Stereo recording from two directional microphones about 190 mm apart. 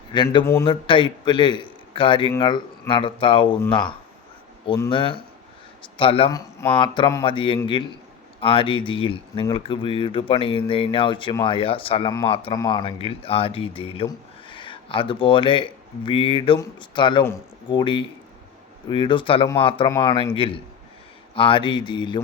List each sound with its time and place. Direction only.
0.1 s speech: 25° left (ahead or behind)
6.3 s speech: 15° left (ahead or behind)
6.7 s speech: 25° left (ahead or behind)